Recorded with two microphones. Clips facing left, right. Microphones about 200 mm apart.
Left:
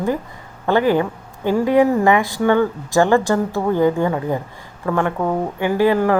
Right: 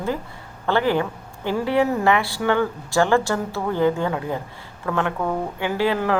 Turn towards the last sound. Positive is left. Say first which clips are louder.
# left 6 dB
turn(degrees=15)  # may be behind; listen again after turning